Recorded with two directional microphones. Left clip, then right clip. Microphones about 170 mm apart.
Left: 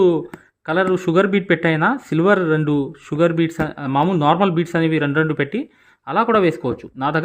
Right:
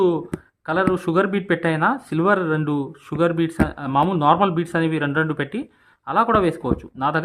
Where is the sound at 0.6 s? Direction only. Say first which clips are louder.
Left 3 dB; 15° left (ahead or behind).